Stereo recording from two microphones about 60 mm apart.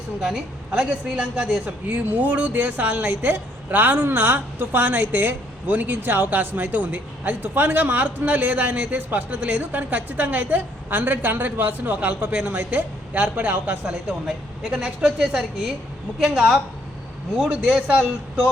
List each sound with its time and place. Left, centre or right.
0.2 s a woman's voice: centre
1.9 s a woman's voice: right
13.9 s a woman's voice: centre